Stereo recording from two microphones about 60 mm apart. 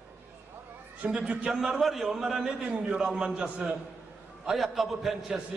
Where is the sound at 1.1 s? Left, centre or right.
Centre.